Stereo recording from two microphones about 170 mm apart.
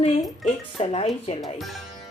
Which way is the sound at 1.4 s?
Centre (ahead or behind).